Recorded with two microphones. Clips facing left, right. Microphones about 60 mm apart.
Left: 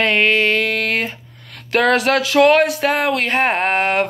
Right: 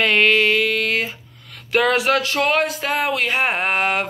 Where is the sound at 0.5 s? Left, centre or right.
Left.